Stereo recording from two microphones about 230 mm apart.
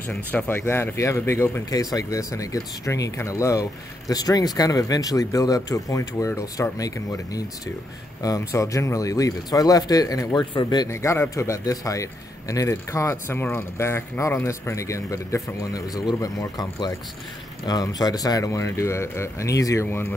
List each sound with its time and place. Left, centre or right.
0.3 s speech: centre